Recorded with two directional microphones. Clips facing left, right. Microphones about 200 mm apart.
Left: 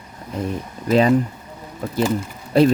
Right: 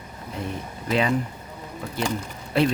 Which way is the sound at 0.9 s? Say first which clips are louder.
Left 7 dB; 40° left (ahead or behind).